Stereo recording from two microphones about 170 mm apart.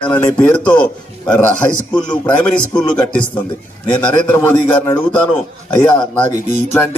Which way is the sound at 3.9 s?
10° left (ahead or behind).